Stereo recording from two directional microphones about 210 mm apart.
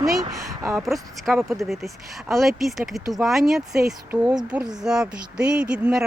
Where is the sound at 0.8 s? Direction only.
Centre (ahead or behind).